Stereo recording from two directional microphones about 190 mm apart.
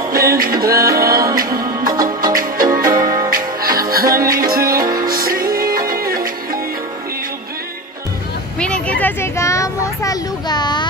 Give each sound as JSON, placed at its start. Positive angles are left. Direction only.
{"t": 0.1, "sound": "music", "side_deg": -50}
{"t": 1.4, "sound": "music", "side_deg": -20}
{"t": 2.3, "sound": "music", "side_deg": -45}
{"t": 3.0, "sound": "music", "side_deg": -20}
{"t": 3.3, "sound": "music", "side_deg": -50}
{"t": 8.5, "sound": "vehicle", "side_deg": 5}